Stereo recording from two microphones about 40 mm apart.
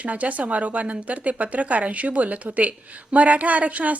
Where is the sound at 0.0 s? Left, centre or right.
Right.